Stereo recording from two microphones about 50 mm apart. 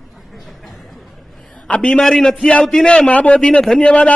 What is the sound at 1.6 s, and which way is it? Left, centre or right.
Speech, left.